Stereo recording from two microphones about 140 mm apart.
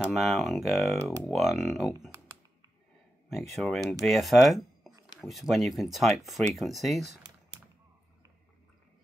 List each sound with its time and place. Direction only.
0.1 s speech: centre (ahead or behind)
2.0 s computer keyboard: 20° right (ahead or behind)
3.3 s speech: centre (ahead or behind)